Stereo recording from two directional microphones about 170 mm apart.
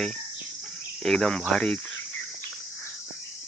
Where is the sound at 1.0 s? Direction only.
Centre (ahead or behind).